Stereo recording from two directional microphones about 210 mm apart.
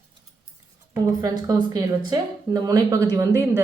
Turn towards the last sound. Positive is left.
turn(degrees=-15)  # may be behind; listen again after turning